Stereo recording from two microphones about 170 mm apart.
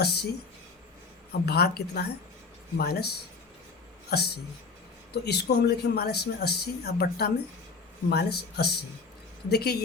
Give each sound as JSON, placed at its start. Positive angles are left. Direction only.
{"t": 0.0, "sound": "speech", "side_deg": 70}
{"t": 1.3, "sound": "speech", "side_deg": 70}